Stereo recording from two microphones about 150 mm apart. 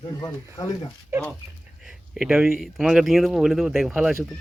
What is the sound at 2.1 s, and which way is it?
Speech, 5° right (ahead or behind).